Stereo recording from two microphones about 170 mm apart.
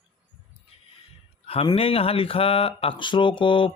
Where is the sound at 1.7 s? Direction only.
35° left (ahead or behind).